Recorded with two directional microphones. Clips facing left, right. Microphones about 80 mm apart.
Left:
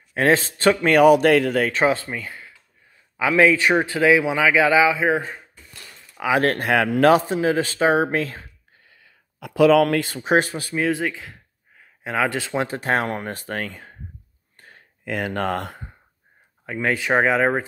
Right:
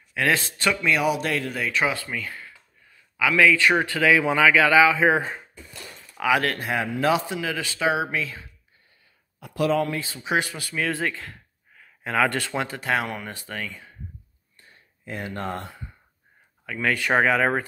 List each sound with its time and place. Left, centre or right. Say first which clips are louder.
0.1 s speech: left 5 dB; left
0.8 s speech: left 11 dB; left
1.7 s speech: left 5 dB; left
4.2 s speech: even; centre
4.5 s speech: left 1 dB; centre
5.0 s speech: right 1 dB; centre
6.6 s a man's voice: left 7 dB; left
7.1 s speech: left 6 dB; left
8.8 s a sound: left 7 dB; left
10.0 s speech: left 6 dB; left
10.9 s speech: left 4 dB; centre; by 13.9 s left
14.6 s a sound: left 6 dB; left
16.6 s speech: left 2 dB; left